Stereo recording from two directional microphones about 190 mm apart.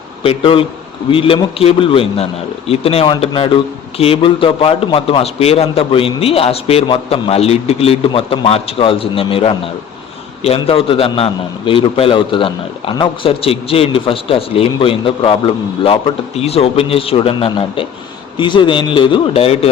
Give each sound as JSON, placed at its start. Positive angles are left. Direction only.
{"t": 0.2, "sound": "a man's voice", "side_deg": 30}